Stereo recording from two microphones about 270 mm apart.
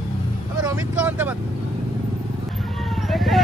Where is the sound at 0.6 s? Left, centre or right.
Centre.